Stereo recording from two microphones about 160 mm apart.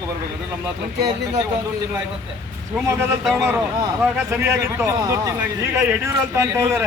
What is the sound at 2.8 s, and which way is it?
Speech, 20° right (ahead or behind).